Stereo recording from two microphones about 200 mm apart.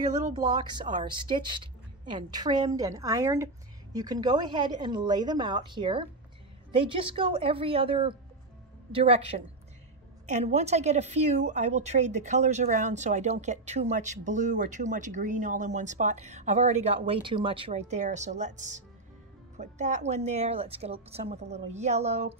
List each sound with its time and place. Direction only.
0.9 s a woman's voice: 25° right (ahead or behind)